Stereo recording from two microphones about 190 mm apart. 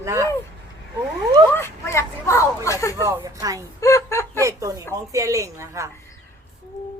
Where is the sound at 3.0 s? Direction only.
15° right (ahead or behind).